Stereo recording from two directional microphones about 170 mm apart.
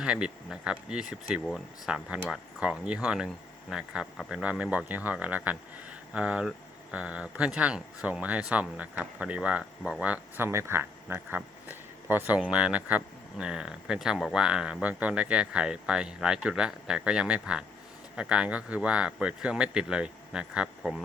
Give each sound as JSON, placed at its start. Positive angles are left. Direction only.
{"t": 0.0, "sound": "speech", "side_deg": -5}